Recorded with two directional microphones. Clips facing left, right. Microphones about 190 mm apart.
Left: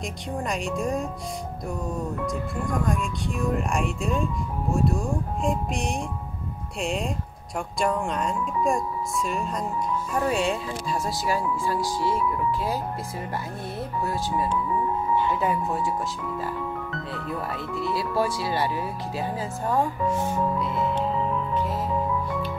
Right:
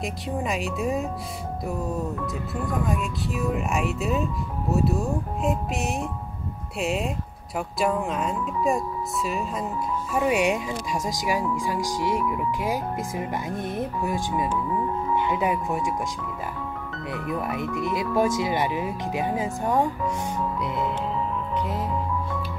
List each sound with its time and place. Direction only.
0.0 s speech: 5° right (ahead or behind)
2.2 s speech: 5° right (ahead or behind)
17.1 s speech: 15° right (ahead or behind)